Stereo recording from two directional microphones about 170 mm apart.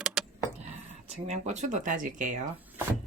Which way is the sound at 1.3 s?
45° right (ahead or behind).